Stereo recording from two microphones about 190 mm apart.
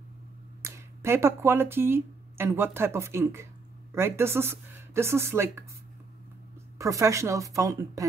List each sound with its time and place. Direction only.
0.6 s speech: 15° right (ahead or behind)
6.8 s speech: 15° right (ahead or behind)